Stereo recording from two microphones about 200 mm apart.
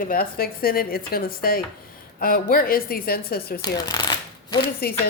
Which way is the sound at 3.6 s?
20° left (ahead or behind).